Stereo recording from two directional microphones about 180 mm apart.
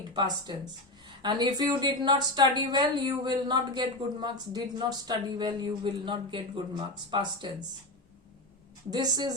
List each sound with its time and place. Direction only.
0.1 s speech: 25° right (ahead or behind)
8.9 s speech: 20° right (ahead or behind)